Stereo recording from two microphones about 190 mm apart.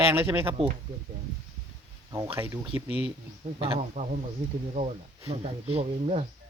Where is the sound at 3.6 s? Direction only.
35° right (ahead or behind).